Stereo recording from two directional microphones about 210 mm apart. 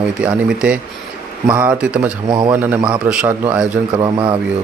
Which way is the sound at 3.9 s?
20° right (ahead or behind).